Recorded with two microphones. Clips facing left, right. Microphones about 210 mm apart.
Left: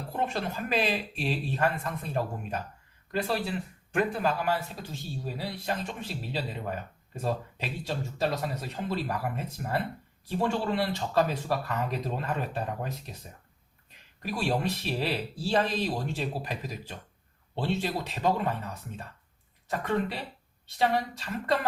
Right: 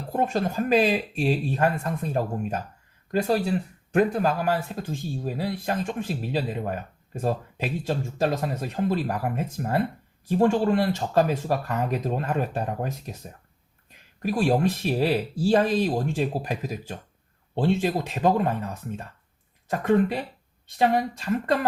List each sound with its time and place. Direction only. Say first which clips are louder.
0.1 s speech: right 7 dB; 45° right (ahead or behind)
14.2 s speech: right 7 dB; 50° right (ahead or behind)